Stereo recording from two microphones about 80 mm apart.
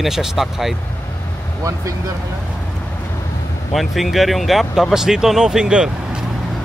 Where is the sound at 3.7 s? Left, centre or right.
Centre.